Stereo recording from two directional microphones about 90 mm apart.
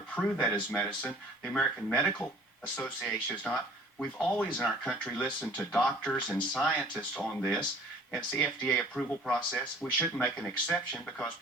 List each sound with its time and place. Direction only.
0.1 s speech: 15° left (ahead or behind)
9.6 s speech: 20° left (ahead or behind)